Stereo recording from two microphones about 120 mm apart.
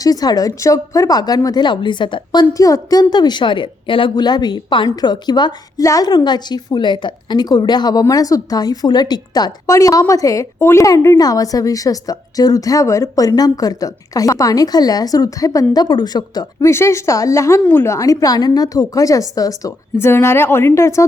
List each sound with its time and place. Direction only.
0.0 s a woman's voice: 30° left (ahead or behind)